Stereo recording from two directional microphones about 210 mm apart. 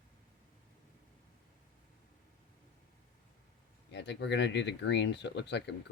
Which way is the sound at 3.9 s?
55° left (ahead or behind).